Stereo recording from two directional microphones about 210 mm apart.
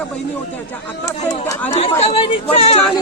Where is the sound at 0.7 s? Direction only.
15° left (ahead or behind).